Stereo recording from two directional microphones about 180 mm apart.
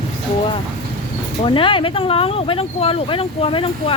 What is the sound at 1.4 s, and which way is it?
Speech, 30° left (ahead or behind).